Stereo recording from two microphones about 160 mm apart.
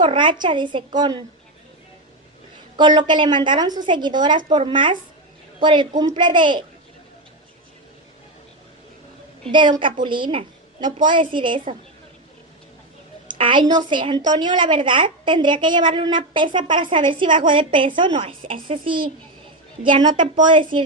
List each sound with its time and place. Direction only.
0.0 s a woman's voice: 30° right (ahead or behind)
2.8 s a woman's voice: 30° right (ahead or behind)
9.5 s a woman's voice: 30° right (ahead or behind)
13.4 s a woman's voice: 30° right (ahead or behind)